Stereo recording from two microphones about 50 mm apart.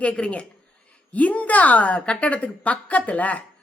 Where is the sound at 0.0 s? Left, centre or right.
Left.